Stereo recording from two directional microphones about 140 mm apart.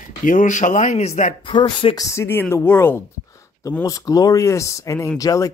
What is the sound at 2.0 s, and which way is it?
Speech, 20° left (ahead or behind).